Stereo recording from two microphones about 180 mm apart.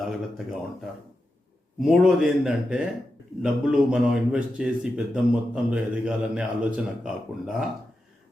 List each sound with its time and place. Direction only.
0.0 s speech: centre (ahead or behind)
1.8 s a man's voice: 5° right (ahead or behind)